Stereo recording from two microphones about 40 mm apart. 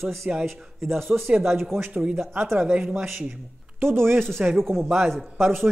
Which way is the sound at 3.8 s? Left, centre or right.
Right.